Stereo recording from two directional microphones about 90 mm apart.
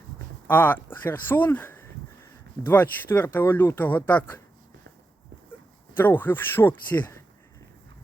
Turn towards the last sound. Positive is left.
turn(degrees=20)  # may be behind; listen again after turning